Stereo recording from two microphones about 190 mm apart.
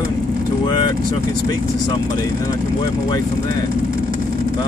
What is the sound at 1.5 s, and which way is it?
Speech, 20° left (ahead or behind).